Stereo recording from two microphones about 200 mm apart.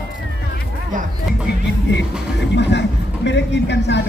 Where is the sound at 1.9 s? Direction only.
60° left (ahead or behind).